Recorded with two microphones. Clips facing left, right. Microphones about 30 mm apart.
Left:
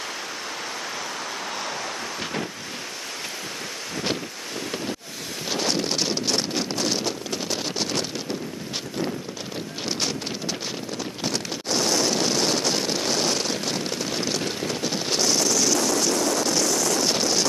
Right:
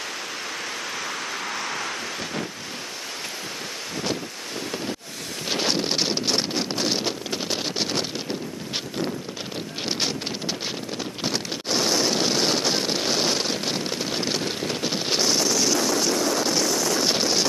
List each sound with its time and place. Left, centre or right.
5.5 s wind: centre
9.8 s wind noise: centre